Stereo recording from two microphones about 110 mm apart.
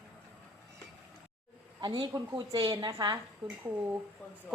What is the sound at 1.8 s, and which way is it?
A woman's voice, 40° right (ahead or behind).